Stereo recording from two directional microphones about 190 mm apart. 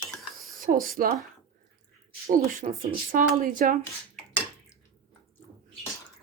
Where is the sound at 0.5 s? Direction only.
45° right (ahead or behind).